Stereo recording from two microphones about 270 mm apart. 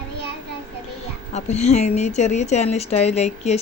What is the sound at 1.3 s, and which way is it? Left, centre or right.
A woman's voice, left.